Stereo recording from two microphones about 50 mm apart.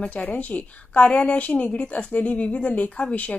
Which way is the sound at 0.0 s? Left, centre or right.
Left.